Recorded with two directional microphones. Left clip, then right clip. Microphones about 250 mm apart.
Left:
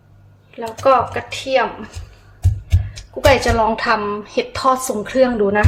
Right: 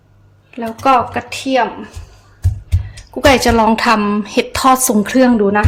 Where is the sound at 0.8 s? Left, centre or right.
Right.